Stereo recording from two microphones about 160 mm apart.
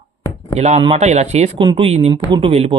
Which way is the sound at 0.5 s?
45° right (ahead or behind).